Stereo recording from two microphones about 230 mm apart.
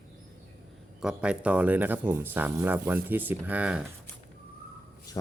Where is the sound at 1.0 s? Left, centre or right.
Centre.